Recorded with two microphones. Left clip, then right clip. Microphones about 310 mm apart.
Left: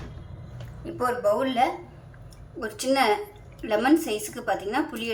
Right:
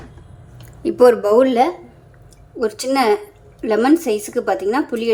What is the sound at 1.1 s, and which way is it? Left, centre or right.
Speech, right.